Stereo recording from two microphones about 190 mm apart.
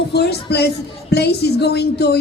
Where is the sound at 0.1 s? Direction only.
60° left (ahead or behind).